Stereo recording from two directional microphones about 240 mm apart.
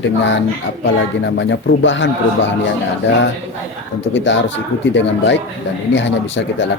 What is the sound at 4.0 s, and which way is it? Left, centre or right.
A man's voice, left.